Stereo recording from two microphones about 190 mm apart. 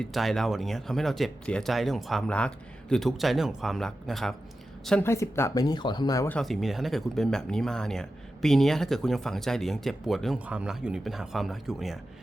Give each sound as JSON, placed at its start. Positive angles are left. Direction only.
{"t": 0.0, "sound": "speech", "side_deg": 0}
{"t": 6.3, "sound": "speech", "side_deg": 0}